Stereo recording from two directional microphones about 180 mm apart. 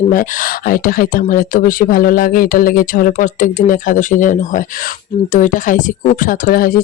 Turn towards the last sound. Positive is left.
turn(degrees=50)  # may be behind; listen again after turning